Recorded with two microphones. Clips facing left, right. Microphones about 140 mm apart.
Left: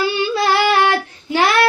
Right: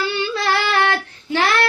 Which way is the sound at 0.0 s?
15° left (ahead or behind).